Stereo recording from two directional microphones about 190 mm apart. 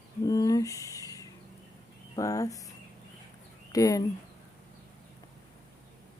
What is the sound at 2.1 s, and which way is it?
Speech, 15° left (ahead or behind).